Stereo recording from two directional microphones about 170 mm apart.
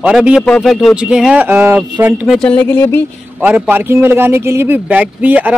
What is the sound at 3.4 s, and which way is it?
A man's voice, 10° right (ahead or behind).